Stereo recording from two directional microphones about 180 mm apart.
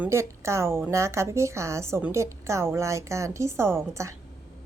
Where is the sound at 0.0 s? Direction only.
15° right (ahead or behind).